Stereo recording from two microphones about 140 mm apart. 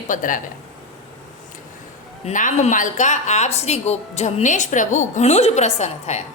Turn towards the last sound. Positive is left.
turn(degrees=55)  # may be behind; listen again after turning